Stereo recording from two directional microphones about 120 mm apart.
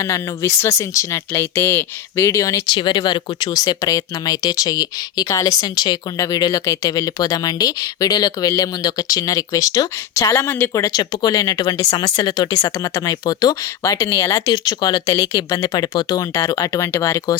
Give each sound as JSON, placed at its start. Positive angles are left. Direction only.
{"t": 0.0, "sound": "speech", "side_deg": 25}
{"t": 2.6, "sound": "speech", "side_deg": 40}